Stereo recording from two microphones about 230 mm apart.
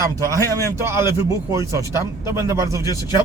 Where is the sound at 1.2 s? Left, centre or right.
Centre.